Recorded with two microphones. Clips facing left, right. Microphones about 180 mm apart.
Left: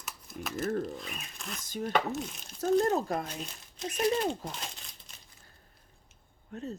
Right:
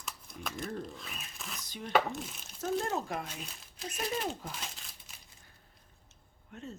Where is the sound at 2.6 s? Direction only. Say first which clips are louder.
Left 7 dB; 40° left (ahead or behind).